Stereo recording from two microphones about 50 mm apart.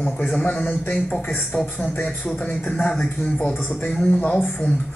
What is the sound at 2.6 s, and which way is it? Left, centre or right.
Speech, left.